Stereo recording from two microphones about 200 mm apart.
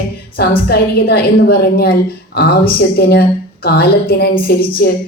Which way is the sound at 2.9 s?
55° left (ahead or behind).